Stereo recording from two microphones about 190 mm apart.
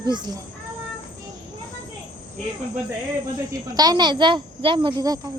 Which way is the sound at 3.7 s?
20° right (ahead or behind).